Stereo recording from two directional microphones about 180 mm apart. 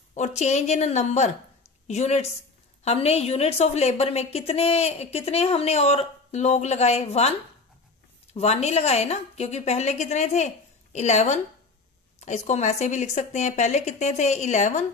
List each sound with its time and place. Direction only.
0.1 s a woman's voice: 40° left (ahead or behind)